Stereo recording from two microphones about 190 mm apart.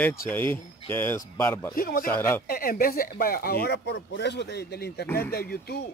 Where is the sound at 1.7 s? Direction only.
50° left (ahead or behind).